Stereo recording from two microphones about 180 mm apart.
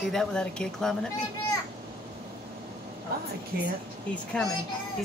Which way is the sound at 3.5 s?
60° right (ahead or behind).